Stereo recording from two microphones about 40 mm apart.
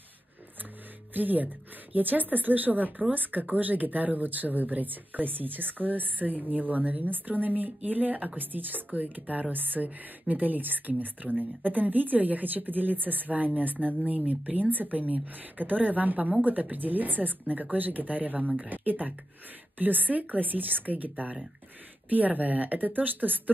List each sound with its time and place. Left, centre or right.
1.1 s speech: right